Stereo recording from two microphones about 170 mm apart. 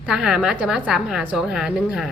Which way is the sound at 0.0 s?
5° right (ahead or behind).